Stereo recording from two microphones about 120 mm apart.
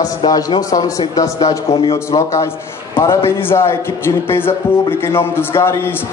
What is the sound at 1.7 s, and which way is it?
Speech, 50° left (ahead or behind).